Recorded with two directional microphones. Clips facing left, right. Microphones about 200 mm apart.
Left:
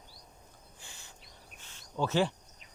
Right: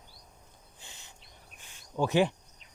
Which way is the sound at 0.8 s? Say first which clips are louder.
Right 1 dB; 20° right (ahead or behind).